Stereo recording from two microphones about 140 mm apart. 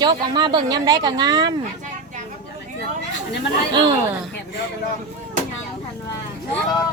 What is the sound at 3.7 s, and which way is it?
Speech, 30° right (ahead or behind).